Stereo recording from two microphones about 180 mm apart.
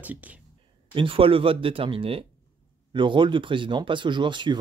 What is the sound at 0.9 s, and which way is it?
Speech, 30° right (ahead or behind).